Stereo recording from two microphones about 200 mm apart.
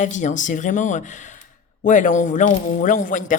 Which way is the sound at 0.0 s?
40° left (ahead or behind).